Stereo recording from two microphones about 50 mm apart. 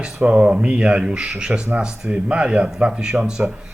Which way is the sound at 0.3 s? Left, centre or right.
Right.